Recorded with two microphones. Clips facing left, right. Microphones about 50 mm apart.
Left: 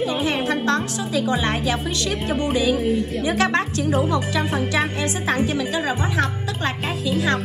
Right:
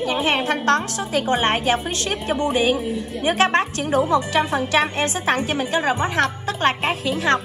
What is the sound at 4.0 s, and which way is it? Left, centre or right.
Speech, right.